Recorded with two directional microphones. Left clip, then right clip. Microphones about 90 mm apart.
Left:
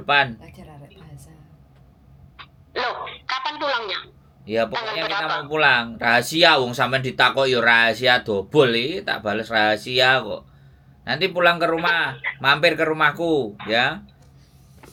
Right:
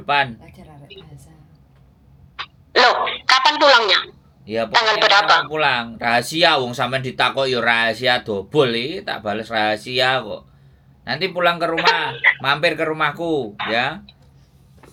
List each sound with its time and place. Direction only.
0.0 s a sound: centre (ahead or behind)
2.3 s a sound: 45° right (ahead or behind)
4.4 s a man's voice: centre (ahead or behind)
4.7 s speech: 45° right (ahead or behind)
5.5 s speech: centre (ahead or behind)
11.7 s speech: 40° right (ahead or behind)
12.4 s speech: centre (ahead or behind)